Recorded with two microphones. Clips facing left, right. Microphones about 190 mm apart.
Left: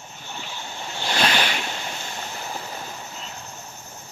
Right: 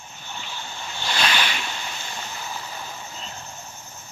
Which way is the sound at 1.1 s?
35° left (ahead or behind).